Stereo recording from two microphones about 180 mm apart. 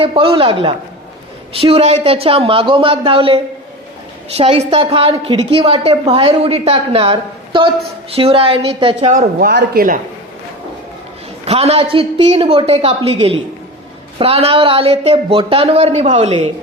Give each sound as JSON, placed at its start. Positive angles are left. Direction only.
{"t": 0.0, "sound": "a woman's voice", "side_deg": -30}
{"t": 9.4, "sound": "speech", "side_deg": -65}
{"t": 11.4, "sound": "a woman's voice", "side_deg": -35}